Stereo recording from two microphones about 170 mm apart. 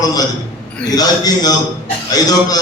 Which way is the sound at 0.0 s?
25° left (ahead or behind).